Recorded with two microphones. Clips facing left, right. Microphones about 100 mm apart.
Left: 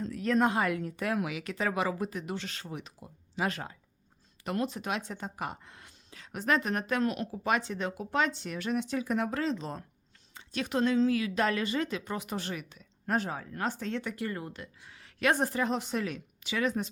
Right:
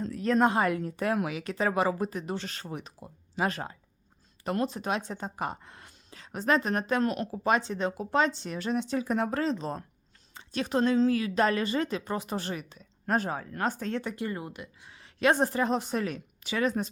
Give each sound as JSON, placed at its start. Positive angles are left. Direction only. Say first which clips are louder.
{"t": 0.0, "sound": "speech", "louder": "right 2 dB", "side_deg": -35}
{"t": 14.3, "sound": "speech", "louder": "right 2 dB", "side_deg": -20}